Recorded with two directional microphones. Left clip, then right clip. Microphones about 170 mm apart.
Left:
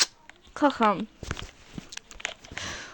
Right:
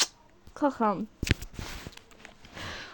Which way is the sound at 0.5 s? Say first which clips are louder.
Left 4 dB; 5° left (ahead or behind).